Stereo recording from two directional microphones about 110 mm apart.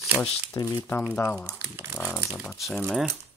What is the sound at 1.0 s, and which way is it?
Speech, 15° left (ahead or behind).